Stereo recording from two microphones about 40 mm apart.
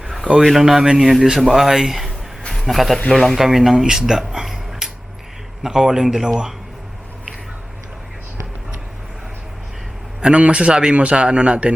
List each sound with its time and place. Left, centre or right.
0.6 s speech: centre
2.5 s a man's voice: centre
3.1 s speech: centre
3.3 s speech: centre
4.3 s a sound: centre
5.6 s speech: centre
10.2 s a man's voice: right